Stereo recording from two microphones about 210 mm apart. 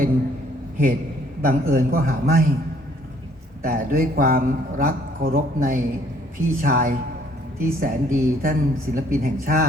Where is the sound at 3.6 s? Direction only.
40° right (ahead or behind).